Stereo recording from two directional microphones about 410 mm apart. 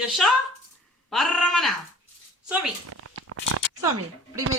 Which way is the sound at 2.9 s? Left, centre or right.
Right.